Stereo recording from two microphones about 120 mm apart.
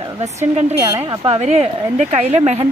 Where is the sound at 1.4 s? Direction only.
70° right (ahead or behind).